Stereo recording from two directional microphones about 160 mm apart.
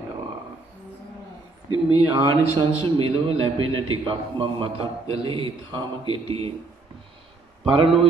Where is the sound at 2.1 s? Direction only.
30° right (ahead or behind).